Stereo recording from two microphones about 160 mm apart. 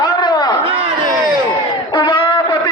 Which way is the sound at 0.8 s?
35° right (ahead or behind).